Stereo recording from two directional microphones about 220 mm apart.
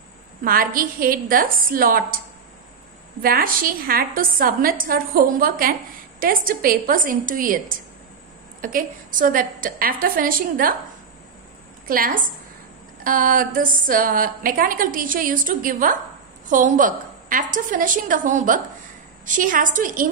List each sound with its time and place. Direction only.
0.4 s a woman's voice: 40° right (ahead or behind)
11.9 s a woman's voice: 40° right (ahead or behind)